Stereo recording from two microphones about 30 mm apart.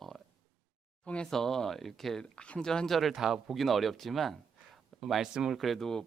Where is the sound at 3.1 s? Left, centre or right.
Centre.